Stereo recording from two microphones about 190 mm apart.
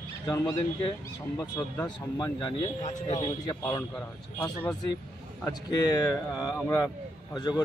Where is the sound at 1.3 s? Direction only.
15° left (ahead or behind).